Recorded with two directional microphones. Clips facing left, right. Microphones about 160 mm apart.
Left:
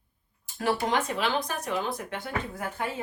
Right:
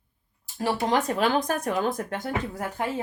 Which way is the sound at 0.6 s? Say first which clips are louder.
Right 2 dB; 35° right (ahead or behind).